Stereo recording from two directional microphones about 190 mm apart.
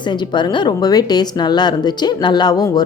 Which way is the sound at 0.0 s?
25° left (ahead or behind).